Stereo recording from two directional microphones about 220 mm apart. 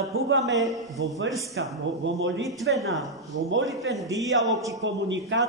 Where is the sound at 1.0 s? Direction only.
55° right (ahead or behind).